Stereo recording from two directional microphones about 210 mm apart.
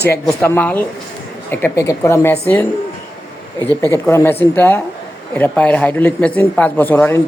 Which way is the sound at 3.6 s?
15° left (ahead or behind).